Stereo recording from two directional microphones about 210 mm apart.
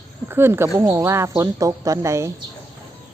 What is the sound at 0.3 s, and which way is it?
Speech, 10° right (ahead or behind).